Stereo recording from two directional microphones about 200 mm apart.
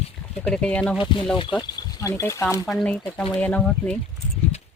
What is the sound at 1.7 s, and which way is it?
Speech, 15° left (ahead or behind).